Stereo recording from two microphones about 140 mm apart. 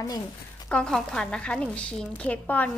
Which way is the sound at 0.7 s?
5° left (ahead or behind).